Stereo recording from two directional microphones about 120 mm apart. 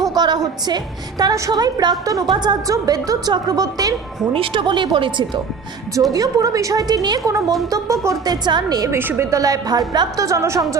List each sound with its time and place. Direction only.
0.0 s music: 35° right (ahead or behind)
1.2 s a woman's voice: 35° right (ahead or behind)
4.4 s a woman's voice: 40° right (ahead or behind)
5.9 s a woman's voice: 30° right (ahead or behind)
9.0 s a woman's voice: 20° right (ahead or behind)